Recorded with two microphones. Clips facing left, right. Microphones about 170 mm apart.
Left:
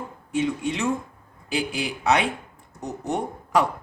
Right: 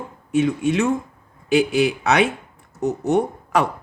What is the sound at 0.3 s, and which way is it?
A man's voice, 70° right (ahead or behind).